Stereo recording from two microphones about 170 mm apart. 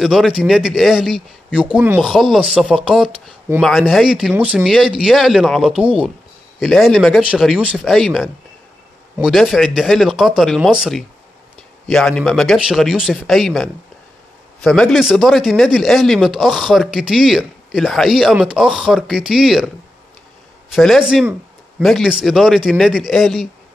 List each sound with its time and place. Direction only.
0.0 s speech: centre (ahead or behind)
5.8 s speech: 35° right (ahead or behind)
6.6 s speech: centre (ahead or behind)
20.7 s speech: centre (ahead or behind)